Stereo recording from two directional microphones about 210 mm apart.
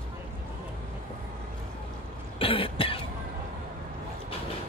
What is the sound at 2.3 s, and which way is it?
Cough, 25° left (ahead or behind).